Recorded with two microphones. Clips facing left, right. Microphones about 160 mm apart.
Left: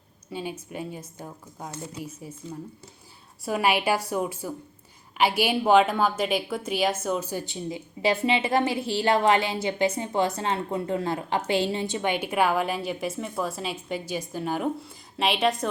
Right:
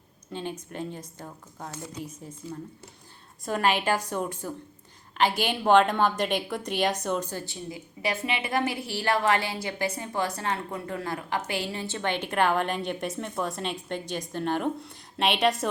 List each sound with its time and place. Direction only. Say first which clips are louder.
0.3 s a woman's voice: left 1 dB; 10° left (ahead or behind)
3.4 s a woman's voice: left 1 dB; 10° left (ahead or behind)